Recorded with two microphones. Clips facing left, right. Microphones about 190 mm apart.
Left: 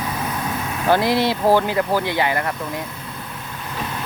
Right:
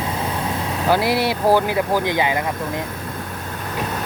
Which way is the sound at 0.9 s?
10° right (ahead or behind).